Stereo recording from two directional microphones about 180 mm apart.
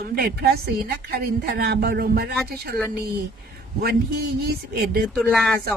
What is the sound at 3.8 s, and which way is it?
Speech, 60° right (ahead or behind).